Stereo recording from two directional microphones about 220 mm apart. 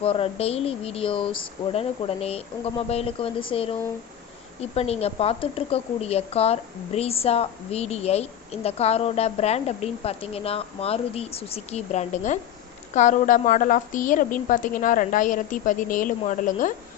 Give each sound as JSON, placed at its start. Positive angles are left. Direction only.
{"t": 0.0, "sound": "a woman's voice", "side_deg": 25}